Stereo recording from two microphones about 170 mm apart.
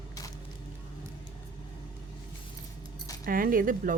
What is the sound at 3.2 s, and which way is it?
Speech, 55° right (ahead or behind).